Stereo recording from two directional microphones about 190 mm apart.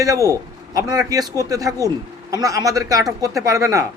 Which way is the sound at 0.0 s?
15° right (ahead or behind).